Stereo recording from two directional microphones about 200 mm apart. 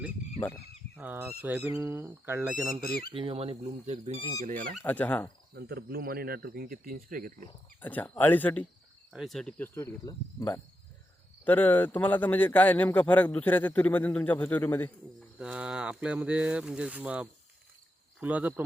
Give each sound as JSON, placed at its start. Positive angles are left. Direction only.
{"t": 0.3, "sound": "speech", "side_deg": 10}
{"t": 0.9, "sound": "speech", "side_deg": -10}
{"t": 3.1, "sound": "speech", "side_deg": -25}
{"t": 4.8, "sound": "a man's voice", "side_deg": 10}
{"t": 5.5, "sound": "speech", "side_deg": -50}
{"t": 7.8, "sound": "a man's voice", "side_deg": 10}
{"t": 15.4, "sound": "speech", "side_deg": -5}